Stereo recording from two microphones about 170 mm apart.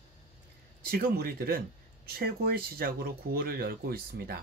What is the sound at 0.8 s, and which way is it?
Speech, 60° right (ahead or behind).